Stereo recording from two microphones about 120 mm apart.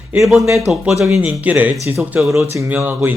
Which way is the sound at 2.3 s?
25° right (ahead or behind).